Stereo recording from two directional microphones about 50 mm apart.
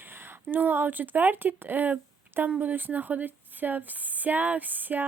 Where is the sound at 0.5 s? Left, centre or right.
Right.